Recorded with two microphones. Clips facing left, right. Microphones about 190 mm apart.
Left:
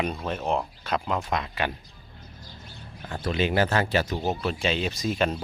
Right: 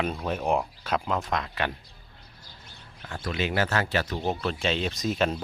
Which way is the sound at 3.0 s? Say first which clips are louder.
Left 4 dB; 20° left (ahead or behind).